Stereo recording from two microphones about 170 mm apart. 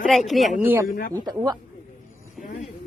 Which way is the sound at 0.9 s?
55° left (ahead or behind).